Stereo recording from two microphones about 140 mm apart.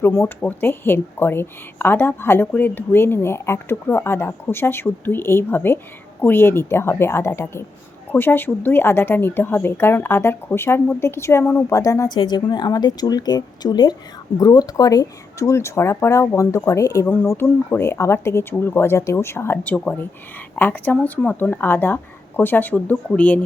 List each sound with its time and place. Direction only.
0.0 s a woman's voice: 20° left (ahead or behind)